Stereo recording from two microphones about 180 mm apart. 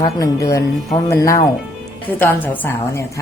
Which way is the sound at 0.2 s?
15° left (ahead or behind).